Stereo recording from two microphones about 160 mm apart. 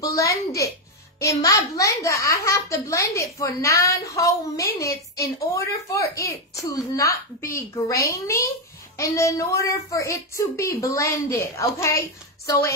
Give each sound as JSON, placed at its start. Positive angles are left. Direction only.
{"t": 0.0, "sound": "a child's voice", "side_deg": 20}
{"t": 7.4, "sound": "a child's voice", "side_deg": 15}